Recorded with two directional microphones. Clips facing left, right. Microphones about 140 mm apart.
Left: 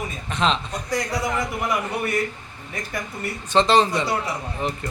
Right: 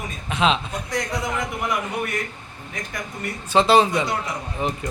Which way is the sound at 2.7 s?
5° left (ahead or behind).